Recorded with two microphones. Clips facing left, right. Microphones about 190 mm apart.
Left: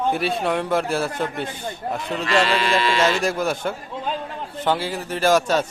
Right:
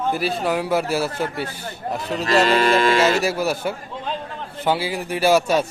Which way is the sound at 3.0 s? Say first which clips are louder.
Right 2 dB; 5° right (ahead or behind).